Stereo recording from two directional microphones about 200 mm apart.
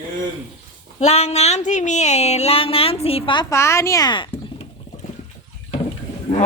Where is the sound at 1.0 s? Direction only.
30° left (ahead or behind).